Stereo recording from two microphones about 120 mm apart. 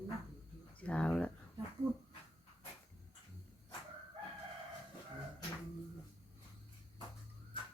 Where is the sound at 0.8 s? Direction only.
10° left (ahead or behind).